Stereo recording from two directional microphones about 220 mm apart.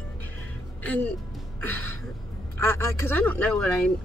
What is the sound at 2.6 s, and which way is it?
A woman's voice, 10° left (ahead or behind).